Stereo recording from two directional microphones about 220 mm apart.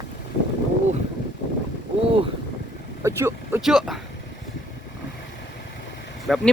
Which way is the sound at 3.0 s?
10° right (ahead or behind).